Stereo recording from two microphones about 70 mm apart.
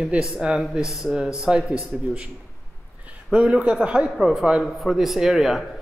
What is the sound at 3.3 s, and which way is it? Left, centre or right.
A man's voice, centre.